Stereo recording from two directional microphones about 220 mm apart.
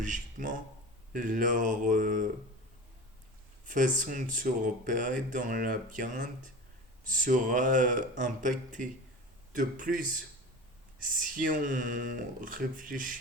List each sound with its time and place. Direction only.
0.0 s speech: 35° right (ahead or behind)
3.7 s speech: 35° right (ahead or behind)
11.3 s speech: 35° right (ahead or behind)